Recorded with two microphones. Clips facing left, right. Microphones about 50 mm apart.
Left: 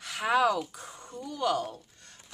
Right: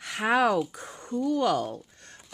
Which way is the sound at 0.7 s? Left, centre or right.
Right.